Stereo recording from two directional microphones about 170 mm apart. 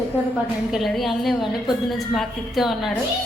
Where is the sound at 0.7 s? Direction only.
Centre (ahead or behind).